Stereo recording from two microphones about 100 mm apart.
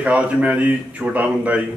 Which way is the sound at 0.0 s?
15° right (ahead or behind).